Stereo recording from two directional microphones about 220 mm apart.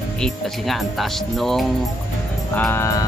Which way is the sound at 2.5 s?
10° left (ahead or behind).